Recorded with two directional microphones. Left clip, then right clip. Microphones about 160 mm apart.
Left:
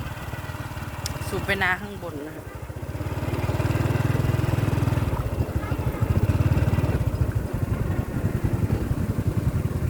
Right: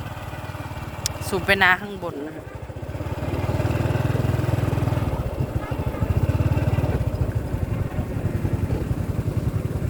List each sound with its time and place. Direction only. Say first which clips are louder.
1.0 s speech: right 6 dB; 55° right (ahead or behind)